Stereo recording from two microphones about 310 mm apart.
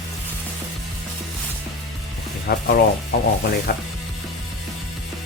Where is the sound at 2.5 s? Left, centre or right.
Left.